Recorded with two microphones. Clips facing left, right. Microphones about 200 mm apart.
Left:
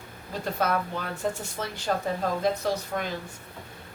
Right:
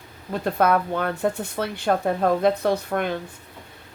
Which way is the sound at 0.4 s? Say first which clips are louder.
Right 7 dB; 60° right (ahead or behind).